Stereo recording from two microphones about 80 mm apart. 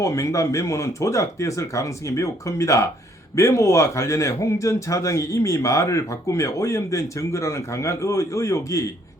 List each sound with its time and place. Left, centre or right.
0.0 s a man's voice: left